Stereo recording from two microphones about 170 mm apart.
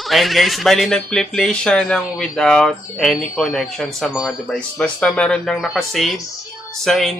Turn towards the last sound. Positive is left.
turn(degrees=0)  # may be behind; listen again after turning